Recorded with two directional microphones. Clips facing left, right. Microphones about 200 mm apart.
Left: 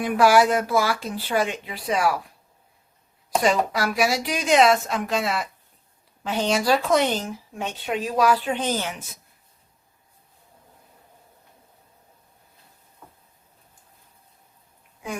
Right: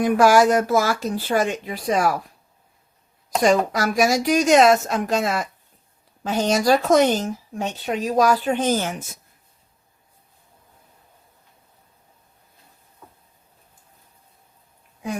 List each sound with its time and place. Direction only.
0.0 s speech: 45° right (ahead or behind)
3.2 s speech: 45° right (ahead or behind)